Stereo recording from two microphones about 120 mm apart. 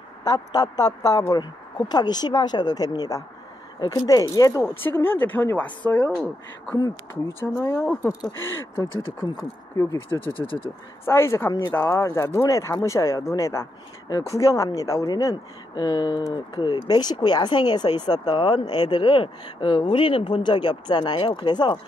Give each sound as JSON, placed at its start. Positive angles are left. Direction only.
{"t": 0.2, "sound": "a woman's voice", "side_deg": 35}
{"t": 9.8, "sound": "speech", "side_deg": 45}
{"t": 11.1, "sound": "a woman's voice", "side_deg": 20}